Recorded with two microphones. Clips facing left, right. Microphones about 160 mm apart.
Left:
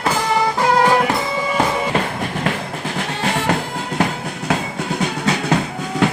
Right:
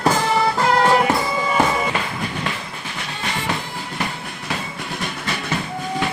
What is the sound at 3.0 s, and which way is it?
Music, 70° left (ahead or behind).